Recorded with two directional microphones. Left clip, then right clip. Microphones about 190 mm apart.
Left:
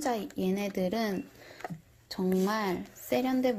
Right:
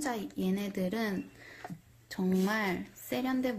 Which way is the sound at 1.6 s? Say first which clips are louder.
Left 6 dB; 55° left (ahead or behind).